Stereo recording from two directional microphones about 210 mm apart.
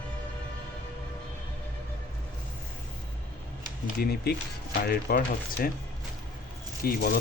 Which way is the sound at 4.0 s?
45° left (ahead or behind).